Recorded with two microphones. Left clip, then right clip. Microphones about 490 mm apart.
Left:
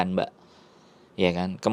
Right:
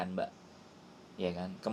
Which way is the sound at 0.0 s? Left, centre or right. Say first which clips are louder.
Left 10 dB; left.